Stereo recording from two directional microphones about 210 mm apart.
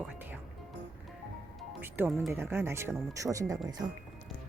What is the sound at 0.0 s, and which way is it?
Music, 10° right (ahead or behind).